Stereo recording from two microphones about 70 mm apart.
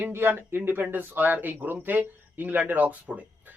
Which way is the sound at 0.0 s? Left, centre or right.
Right.